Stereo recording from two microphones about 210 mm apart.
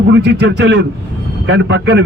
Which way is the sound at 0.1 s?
55° right (ahead or behind).